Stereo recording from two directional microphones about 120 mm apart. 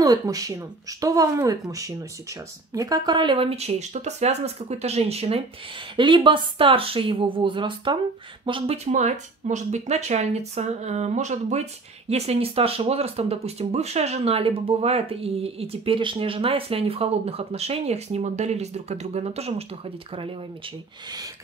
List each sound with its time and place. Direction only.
0.0 s speech: 30° right (ahead or behind); by 5.4 s 60° right (ahead or behind)
5.9 s speech: 45° right (ahead or behind)
8.9 s speech: 90° right; by 11.6 s 70° right (ahead or behind)
12.1 s speech: 60° right (ahead or behind)